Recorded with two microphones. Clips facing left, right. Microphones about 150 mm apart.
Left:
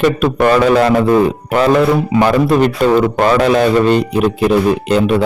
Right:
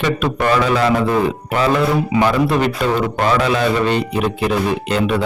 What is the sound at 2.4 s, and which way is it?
Speech, 45° left (ahead or behind).